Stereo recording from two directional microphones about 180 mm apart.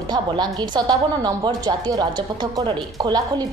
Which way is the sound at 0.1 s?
25° right (ahead or behind).